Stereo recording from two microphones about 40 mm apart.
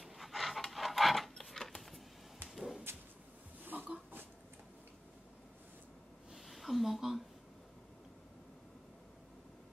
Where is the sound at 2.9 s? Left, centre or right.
Right.